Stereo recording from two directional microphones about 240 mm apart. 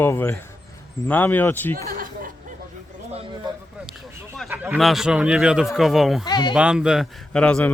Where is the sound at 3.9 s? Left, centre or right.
Centre.